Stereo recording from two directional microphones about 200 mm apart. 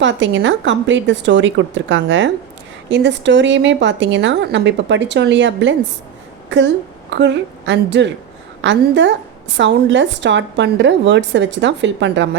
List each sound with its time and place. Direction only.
0.0 s a woman's voice: 65° right (ahead or behind)
2.9 s a woman's voice: 60° right (ahead or behind)